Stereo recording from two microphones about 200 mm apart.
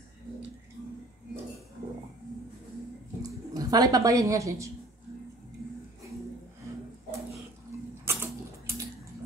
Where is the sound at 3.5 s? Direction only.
20° right (ahead or behind).